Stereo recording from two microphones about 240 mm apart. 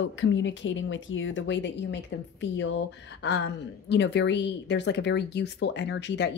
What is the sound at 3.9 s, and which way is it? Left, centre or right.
Speech, left.